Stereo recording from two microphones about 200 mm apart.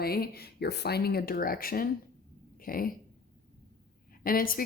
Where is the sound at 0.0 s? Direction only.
50° left (ahead or behind).